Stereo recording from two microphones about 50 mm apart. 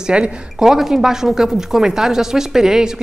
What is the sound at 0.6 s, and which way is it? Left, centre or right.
A man's voice, centre.